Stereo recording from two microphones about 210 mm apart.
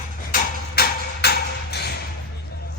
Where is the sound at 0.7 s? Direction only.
50° left (ahead or behind).